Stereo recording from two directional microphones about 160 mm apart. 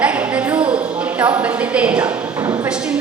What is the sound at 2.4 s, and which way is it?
Speech, 20° right (ahead or behind).